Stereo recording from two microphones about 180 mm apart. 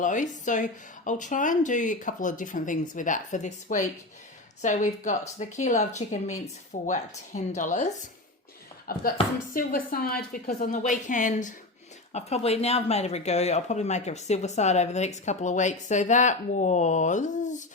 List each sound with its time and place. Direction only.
0.0 s speech: 45° left (ahead or behind)
8.9 s speech: 55° left (ahead or behind)